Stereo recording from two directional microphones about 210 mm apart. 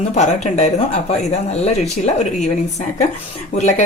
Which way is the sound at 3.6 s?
35° left (ahead or behind).